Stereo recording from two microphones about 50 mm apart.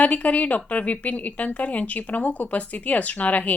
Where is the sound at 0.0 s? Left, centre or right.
Left.